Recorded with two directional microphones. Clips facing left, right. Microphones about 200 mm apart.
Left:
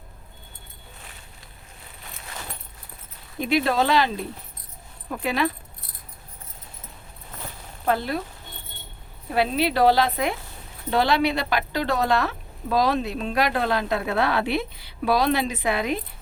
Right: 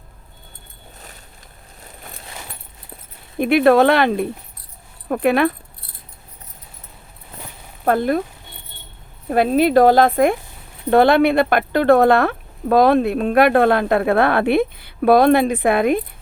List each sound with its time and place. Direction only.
3.3 s speech: 60° right (ahead or behind)
7.9 s speech: 50° right (ahead or behind)
9.3 s speech: 50° right (ahead or behind)